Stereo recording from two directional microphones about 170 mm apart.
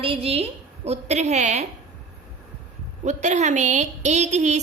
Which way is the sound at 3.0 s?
45° right (ahead or behind).